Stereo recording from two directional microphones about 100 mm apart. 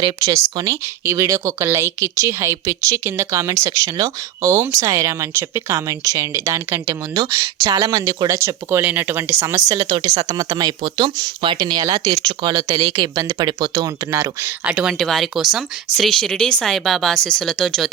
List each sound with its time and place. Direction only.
0.0 s speech: 35° right (ahead or behind)
7.2 s speech: 40° right (ahead or behind)
8.8 s speech: 20° right (ahead or behind)
14.6 s speech: 10° right (ahead or behind)
14.9 s speech: 5° left (ahead or behind)